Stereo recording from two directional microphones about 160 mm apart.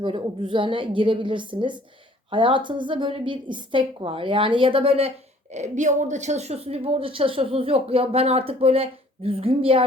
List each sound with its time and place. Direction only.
0.0 s a woman's voice: 30° right (ahead or behind)
5.5 s a woman's voice: 50° right (ahead or behind)